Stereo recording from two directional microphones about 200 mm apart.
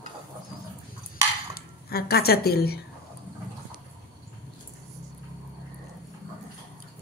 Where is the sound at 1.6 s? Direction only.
50° left (ahead or behind).